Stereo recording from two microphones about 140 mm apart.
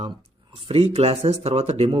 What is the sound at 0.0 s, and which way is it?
Speech, 40° right (ahead or behind).